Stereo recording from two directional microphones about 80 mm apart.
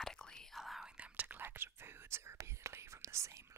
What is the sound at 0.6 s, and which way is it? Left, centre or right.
Whispering, centre.